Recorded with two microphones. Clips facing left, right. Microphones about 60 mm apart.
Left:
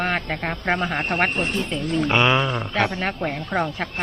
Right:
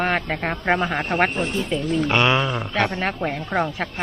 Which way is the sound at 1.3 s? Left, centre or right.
Left.